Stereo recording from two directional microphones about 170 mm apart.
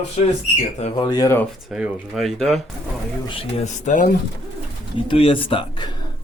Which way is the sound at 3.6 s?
45° left (ahead or behind).